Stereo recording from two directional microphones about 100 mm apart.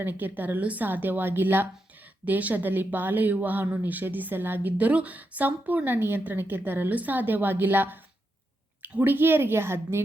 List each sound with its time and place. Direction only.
0.0 s speech: 20° right (ahead or behind)